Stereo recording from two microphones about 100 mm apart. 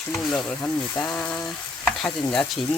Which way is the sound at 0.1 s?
5° left (ahead or behind).